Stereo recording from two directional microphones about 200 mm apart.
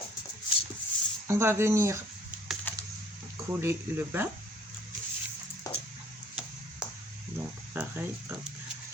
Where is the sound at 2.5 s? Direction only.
Centre (ahead or behind).